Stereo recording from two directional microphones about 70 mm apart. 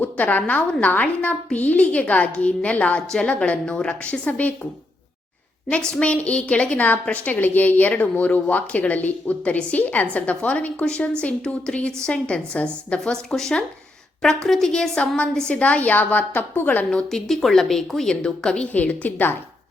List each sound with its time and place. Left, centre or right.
0.0 s a woman's voice: left
5.7 s a woman's voice: centre
16.9 s speech: centre; by 19.4 s left